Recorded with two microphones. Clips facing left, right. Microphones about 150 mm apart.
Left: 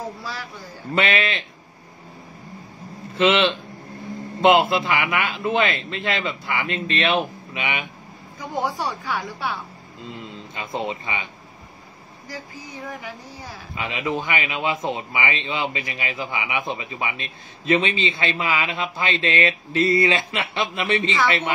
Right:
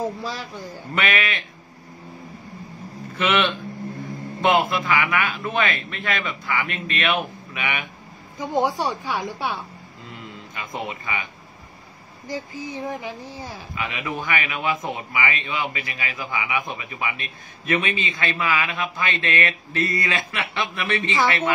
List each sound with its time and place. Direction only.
0.2 s speech: 20° right (ahead or behind)
0.9 s a man's voice: 30° left (ahead or behind)
3.2 s a man's voice: 20° left (ahead or behind)
8.4 s speech: 20° right (ahead or behind)
10.0 s speech: 20° left (ahead or behind)
12.3 s speech: 25° right (ahead or behind)
13.7 s a man's voice: 20° left (ahead or behind)